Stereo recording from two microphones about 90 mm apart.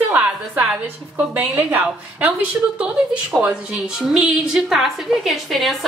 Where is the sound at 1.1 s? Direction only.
15° right (ahead or behind).